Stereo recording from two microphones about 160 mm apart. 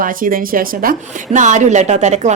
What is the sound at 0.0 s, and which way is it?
Speech, 60° right (ahead or behind).